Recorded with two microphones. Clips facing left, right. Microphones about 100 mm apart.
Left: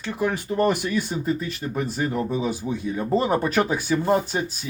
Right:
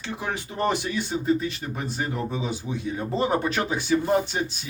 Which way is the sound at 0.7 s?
25° right (ahead or behind).